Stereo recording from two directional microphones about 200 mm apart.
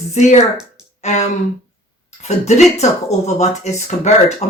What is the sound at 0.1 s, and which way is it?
Speech, 35° left (ahead or behind).